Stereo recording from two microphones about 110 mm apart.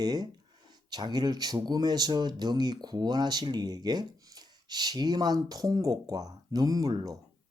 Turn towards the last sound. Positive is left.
turn(degrees=-35)  # may be behind; listen again after turning